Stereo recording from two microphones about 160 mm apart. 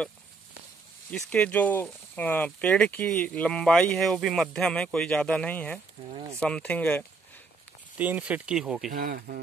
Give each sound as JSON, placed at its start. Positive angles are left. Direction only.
{"t": 1.1, "sound": "speech", "side_deg": 5}
{"t": 6.0, "sound": "speech", "side_deg": -30}
{"t": 6.4, "sound": "speech", "side_deg": 5}
{"t": 8.0, "sound": "speech", "side_deg": -10}
{"t": 8.9, "sound": "speech", "side_deg": -65}